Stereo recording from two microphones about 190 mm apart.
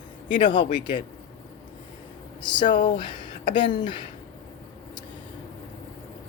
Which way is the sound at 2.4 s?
25° left (ahead or behind).